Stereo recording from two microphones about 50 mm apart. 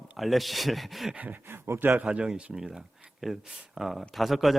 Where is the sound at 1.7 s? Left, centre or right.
Right.